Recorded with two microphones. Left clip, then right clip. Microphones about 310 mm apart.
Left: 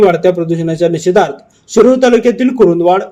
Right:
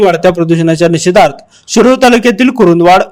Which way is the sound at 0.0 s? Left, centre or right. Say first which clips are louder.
Right 1 dB; right.